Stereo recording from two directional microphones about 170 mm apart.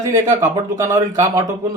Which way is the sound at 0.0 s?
15° right (ahead or behind).